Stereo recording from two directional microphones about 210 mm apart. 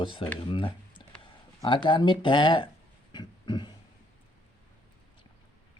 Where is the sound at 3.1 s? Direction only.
20° left (ahead or behind).